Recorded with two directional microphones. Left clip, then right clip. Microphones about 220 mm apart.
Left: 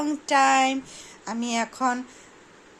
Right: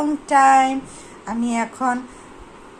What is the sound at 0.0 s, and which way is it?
Speech, 40° left (ahead or behind).